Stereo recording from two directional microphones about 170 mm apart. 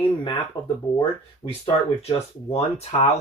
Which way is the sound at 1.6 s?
35° left (ahead or behind).